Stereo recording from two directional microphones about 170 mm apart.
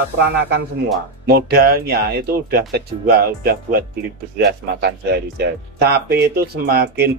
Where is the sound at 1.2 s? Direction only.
70° right (ahead or behind).